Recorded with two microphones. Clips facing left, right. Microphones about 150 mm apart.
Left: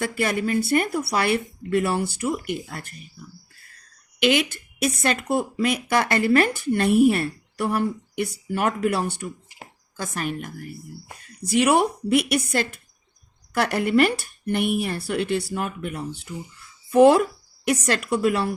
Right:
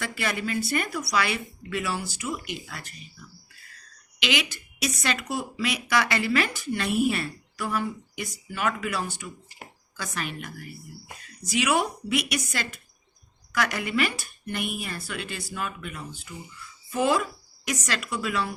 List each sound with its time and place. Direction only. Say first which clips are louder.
0.0 s a woman's voice: left 6 dB; 50° left (ahead or behind)
4.2 s a woman's voice: left 8 dB; 55° left (ahead or behind)
10.0 s a woman's voice: left 5 dB; 45° left (ahead or behind)
11.4 s a woman's voice: left 6 dB; 60° left (ahead or behind)